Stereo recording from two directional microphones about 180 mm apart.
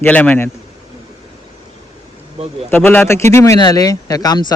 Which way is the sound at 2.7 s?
10° left (ahead or behind).